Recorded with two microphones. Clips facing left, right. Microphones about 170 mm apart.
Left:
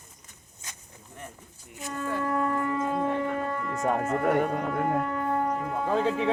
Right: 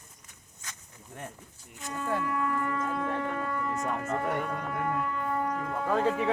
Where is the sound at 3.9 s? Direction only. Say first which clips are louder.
Left 9 dB; 50° left (ahead or behind).